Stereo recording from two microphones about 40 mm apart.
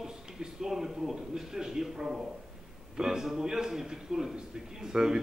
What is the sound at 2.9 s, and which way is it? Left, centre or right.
Speech, centre.